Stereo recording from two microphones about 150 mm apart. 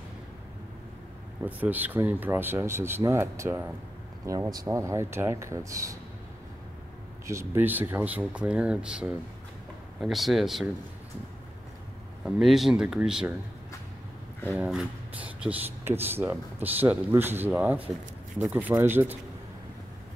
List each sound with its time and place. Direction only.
1.4 s speech: 10° right (ahead or behind)
7.2 s speech: 15° right (ahead or behind)
12.3 s speech: centre (ahead or behind)
14.5 s speech: 5° right (ahead or behind)